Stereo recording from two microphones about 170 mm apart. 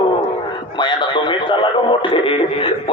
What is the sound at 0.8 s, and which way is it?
A man's voice, 30° left (ahead or behind).